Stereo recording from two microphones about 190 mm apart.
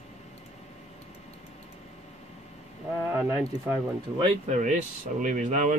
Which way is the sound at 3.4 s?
20° right (ahead or behind).